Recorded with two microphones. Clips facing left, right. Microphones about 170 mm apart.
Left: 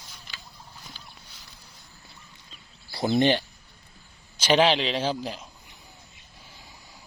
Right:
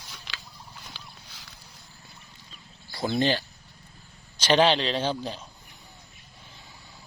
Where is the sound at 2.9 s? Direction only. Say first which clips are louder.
Left 3 dB; 20° left (ahead or behind).